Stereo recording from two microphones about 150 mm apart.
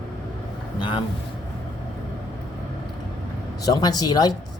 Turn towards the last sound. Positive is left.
turn(degrees=25)  # may be behind; listen again after turning